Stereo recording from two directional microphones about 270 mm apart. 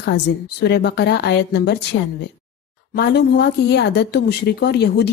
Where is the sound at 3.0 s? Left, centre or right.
Left.